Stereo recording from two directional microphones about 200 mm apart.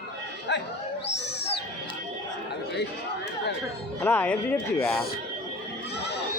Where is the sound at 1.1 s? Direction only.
55° left (ahead or behind).